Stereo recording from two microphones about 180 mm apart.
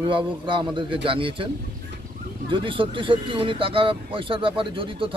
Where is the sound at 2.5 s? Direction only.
30° right (ahead or behind).